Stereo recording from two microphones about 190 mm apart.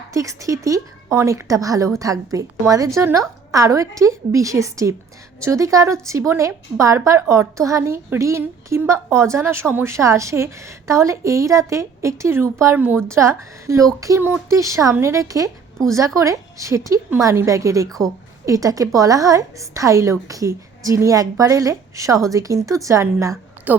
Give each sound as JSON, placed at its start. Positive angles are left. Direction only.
{"t": 0.1, "sound": "a woman's voice", "side_deg": -15}